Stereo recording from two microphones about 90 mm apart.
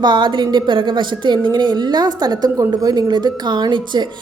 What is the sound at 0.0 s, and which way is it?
A woman's voice, 60° right (ahead or behind).